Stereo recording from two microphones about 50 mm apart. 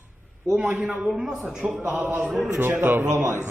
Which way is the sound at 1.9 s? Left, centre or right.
Right.